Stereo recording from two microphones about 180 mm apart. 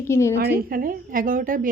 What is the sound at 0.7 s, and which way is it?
A woman's voice, 50° right (ahead or behind).